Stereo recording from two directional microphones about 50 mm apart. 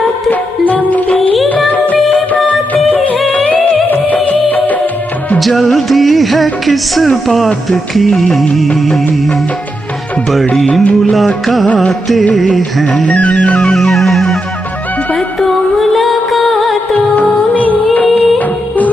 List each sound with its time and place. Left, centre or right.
0.3 s music: left
2.9 s music of bollywood: left
3.3 s music: left
5.6 s music: centre
10.7 s music: left
11.1 s music: centre
11.6 s music: left
12.4 s music: centre
12.8 s music: left
13.6 s music: centre
17.1 s music: left
18.0 s music: centre